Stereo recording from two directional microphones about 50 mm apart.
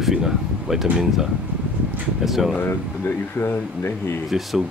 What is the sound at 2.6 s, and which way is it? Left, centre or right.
Speech, left.